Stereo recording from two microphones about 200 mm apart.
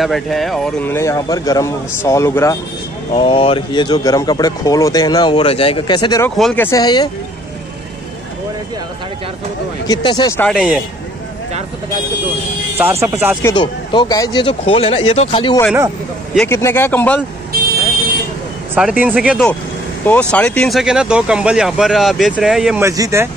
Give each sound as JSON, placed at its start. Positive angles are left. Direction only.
{"t": 0.0, "sound": "speech", "side_deg": 0}
{"t": 3.1, "sound": "speech", "side_deg": 25}
{"t": 6.3, "sound": "speech", "side_deg": 5}
{"t": 9.8, "sound": "speech", "side_deg": 20}
{"t": 10.5, "sound": "speech", "side_deg": -5}
{"t": 12.7, "sound": "speech", "side_deg": -10}
{"t": 13.4, "sound": "speech", "side_deg": 20}
{"t": 16.3, "sound": "speech", "side_deg": 15}
{"t": 18.8, "sound": "speech", "side_deg": -5}
{"t": 22.8, "sound": "speech", "side_deg": -15}